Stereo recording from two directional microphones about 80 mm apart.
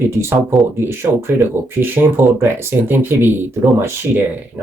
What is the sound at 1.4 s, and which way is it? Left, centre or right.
Speech, right.